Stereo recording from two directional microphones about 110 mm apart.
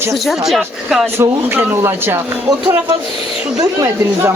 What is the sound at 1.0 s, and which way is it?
Speech, 20° right (ahead or behind).